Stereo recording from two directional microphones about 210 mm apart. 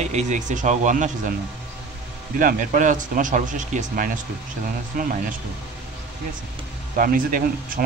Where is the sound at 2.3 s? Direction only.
40° right (ahead or behind).